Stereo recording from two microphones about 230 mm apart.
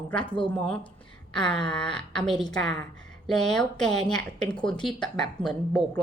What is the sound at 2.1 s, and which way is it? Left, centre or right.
Speech, centre.